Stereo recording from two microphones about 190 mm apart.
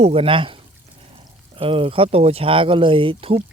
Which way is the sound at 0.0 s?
30° right (ahead or behind).